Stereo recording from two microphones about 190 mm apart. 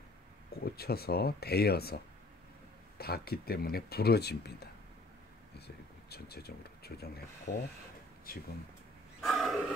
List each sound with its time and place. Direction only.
0.5 s speech: 55° left (ahead or behind)
3.0 s speech: 55° left (ahead or behind)
6.0 s speech: 55° left (ahead or behind)
9.2 s wild animals: centre (ahead or behind)